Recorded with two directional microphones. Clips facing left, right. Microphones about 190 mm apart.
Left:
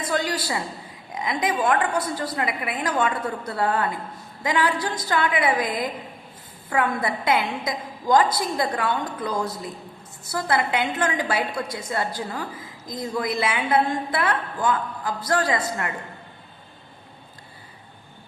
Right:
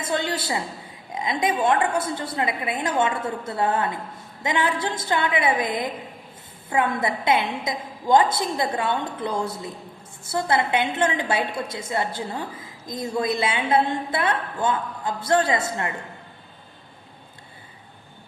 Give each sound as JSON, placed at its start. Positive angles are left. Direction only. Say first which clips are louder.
{"t": 0.0, "sound": "a woman's voice", "louder": "left 1 dB", "side_deg": -25}